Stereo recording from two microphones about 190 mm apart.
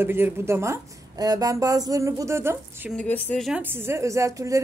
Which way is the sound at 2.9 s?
5° left (ahead or behind).